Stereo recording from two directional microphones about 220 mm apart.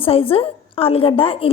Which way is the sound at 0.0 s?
25° left (ahead or behind).